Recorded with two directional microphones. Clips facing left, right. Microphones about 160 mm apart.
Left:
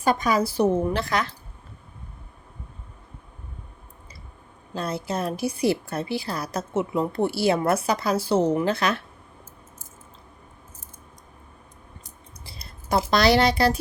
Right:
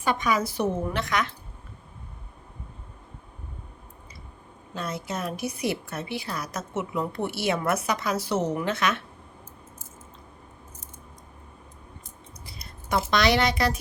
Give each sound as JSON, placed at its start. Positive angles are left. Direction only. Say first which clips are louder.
{"t": 0.0, "sound": "a woman's voice", "louder": "left 3 dB", "side_deg": 35}
{"t": 4.7, "sound": "a woman's voice", "louder": "left 4 dB", "side_deg": 30}
{"t": 12.5, "sound": "speech", "louder": "left 3 dB", "side_deg": 30}